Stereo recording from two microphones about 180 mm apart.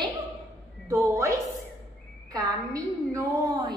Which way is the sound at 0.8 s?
15° right (ahead or behind).